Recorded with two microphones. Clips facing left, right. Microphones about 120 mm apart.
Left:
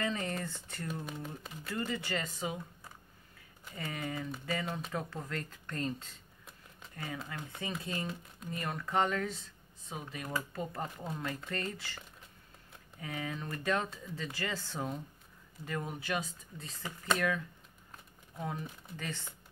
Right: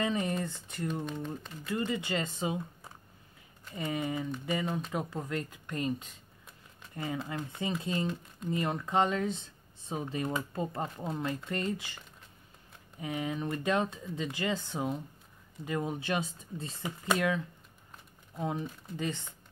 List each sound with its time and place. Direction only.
0.0 s speech: 20° right (ahead or behind)
1.0 s speech: 5° left (ahead or behind)
1.7 s speech: 20° right (ahead or behind)
7.8 s speech: 25° right (ahead or behind)
8.1 s speech: centre (ahead or behind)
8.5 s speech: 20° right (ahead or behind)
13.0 s speech: 20° right (ahead or behind)
18.4 s speech: 20° right (ahead or behind)